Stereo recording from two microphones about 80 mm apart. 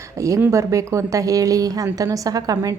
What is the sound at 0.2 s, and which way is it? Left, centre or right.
A woman's voice, right.